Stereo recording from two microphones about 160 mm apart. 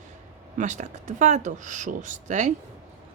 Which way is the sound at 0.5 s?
50° right (ahead or behind).